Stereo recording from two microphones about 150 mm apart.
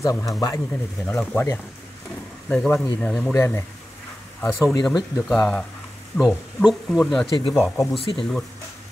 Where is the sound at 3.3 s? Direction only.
15° left (ahead or behind).